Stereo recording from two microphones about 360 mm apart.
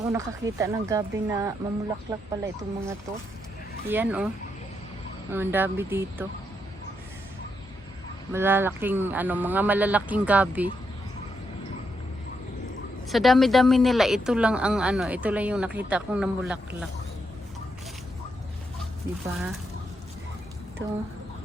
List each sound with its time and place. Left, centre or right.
0.0 s speech: centre
5.3 s speech: centre
8.3 s speech: centre
13.1 s speech: centre
19.1 s speech: right